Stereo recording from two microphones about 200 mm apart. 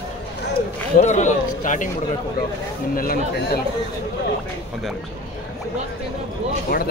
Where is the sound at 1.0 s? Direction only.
35° left (ahead or behind).